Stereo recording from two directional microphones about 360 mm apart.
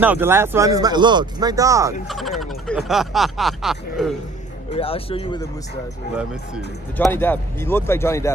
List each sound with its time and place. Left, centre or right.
0.0 s speech: centre
4.7 s speech: centre
6.1 s speech: centre